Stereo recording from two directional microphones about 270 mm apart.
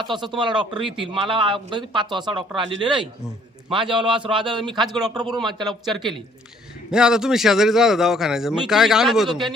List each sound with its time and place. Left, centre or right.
0.0 s a man's voice: centre
3.7 s a man's voice: centre
4.8 s a man's voice: centre
5.1 s a man's voice: centre
5.4 s a man's voice: centre